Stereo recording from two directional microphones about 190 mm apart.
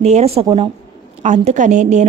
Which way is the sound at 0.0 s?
35° right (ahead or behind).